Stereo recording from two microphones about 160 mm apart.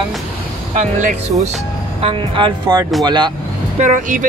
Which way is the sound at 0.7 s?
50° right (ahead or behind).